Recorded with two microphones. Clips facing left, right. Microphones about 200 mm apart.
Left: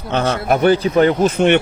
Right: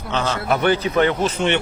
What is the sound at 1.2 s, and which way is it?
Speech, 55° left (ahead or behind).